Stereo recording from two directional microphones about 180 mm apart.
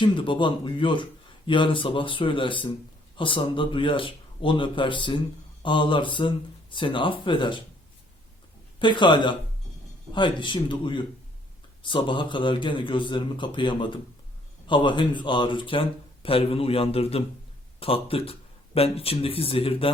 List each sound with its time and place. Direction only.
0.0 s speech: 25° left (ahead or behind)
8.8 s speech: 25° left (ahead or behind)